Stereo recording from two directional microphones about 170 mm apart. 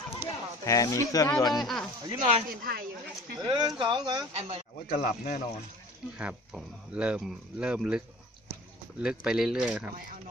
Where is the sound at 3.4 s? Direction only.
25° right (ahead or behind).